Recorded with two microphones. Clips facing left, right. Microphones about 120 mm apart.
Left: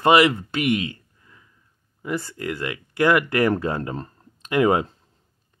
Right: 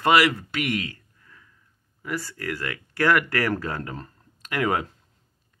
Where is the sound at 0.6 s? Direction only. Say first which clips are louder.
Left 5 dB; 20° left (ahead or behind).